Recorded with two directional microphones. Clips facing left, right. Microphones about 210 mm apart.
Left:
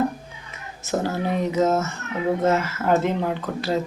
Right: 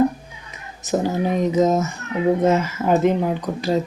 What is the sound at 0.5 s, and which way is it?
A woman's voice, 15° right (ahead or behind).